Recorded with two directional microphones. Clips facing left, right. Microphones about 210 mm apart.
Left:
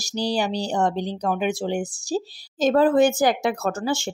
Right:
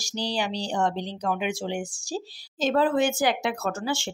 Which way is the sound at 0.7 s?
40° left (ahead or behind).